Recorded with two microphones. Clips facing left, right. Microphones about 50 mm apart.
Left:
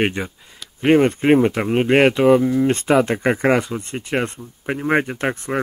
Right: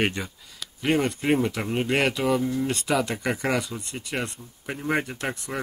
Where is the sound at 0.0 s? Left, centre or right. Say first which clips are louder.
Left 5 dB; left.